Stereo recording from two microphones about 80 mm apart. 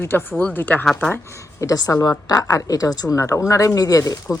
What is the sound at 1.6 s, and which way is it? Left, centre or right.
A woman's voice, left.